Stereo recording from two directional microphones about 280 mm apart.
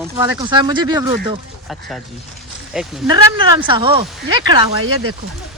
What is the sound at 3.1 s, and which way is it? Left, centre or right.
Speech, centre.